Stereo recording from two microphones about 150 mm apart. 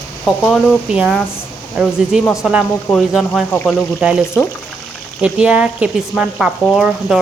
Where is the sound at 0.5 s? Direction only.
5° right (ahead or behind).